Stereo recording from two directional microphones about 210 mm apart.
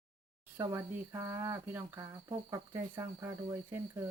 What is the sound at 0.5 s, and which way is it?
Speech, 10° right (ahead or behind).